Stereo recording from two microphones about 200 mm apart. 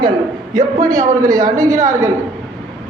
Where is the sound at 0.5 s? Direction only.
15° right (ahead or behind).